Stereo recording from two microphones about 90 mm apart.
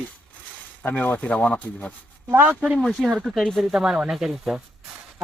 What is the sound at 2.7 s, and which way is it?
Speech, 5° left (ahead or behind).